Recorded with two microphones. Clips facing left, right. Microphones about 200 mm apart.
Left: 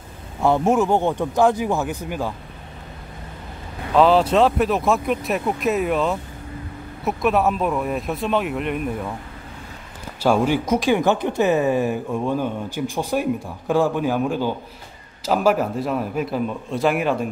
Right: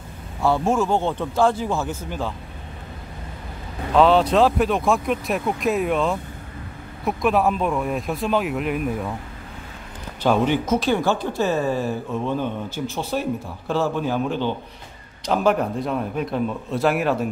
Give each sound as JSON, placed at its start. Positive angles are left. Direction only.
{"t": 0.4, "sound": "speech", "side_deg": 20}
{"t": 3.9, "sound": "speech", "side_deg": 0}
{"t": 10.2, "sound": "speech", "side_deg": 10}